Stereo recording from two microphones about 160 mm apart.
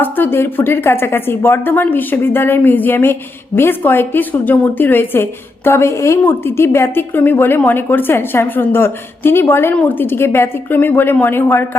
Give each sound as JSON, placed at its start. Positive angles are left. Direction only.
{"t": 0.0, "sound": "speech", "side_deg": 15}